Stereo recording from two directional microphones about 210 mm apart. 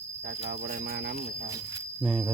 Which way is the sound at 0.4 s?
45° right (ahead or behind).